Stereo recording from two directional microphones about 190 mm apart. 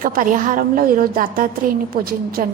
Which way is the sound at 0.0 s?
45° right (ahead or behind).